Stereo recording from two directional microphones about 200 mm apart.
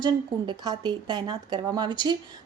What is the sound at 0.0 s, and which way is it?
A woman's voice, 20° right (ahead or behind).